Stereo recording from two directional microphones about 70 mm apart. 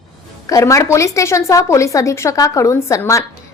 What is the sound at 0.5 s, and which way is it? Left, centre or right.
A woman's voice, left.